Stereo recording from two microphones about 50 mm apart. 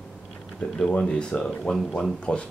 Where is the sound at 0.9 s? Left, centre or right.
Centre.